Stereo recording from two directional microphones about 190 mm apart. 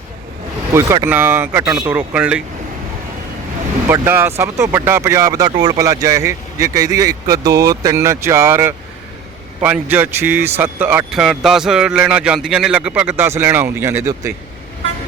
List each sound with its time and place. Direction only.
0.7 s speech: 15° right (ahead or behind)
3.8 s speech: 10° right (ahead or behind)